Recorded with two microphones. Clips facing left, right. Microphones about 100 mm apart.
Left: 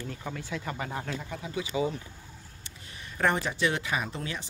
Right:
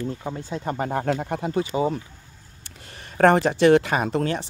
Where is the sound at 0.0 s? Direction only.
30° right (ahead or behind).